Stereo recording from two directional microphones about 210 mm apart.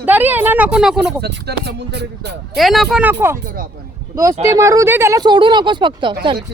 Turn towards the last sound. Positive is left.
turn(degrees=-20)  # may be behind; listen again after turning